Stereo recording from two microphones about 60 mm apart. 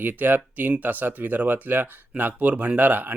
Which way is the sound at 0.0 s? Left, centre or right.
Right.